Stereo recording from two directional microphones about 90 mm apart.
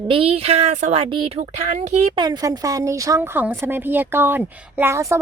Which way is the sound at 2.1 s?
50° right (ahead or behind).